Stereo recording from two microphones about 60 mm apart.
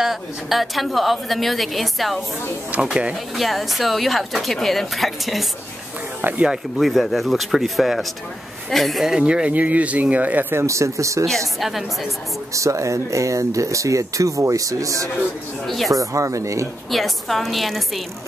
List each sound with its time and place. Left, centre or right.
0.0 s a woman's voice: centre
2.7 s speech: centre
3.3 s a woman's voice: centre
6.2 s speech: right
6.8 s a woman's voice: centre
9.1 s speech: centre
10.5 s speech: right
11.6 s a woman's voice: centre
12.5 s speech: right
15.6 s a woman's voice: centre
15.9 s speech: right
16.9 s a woman's voice: centre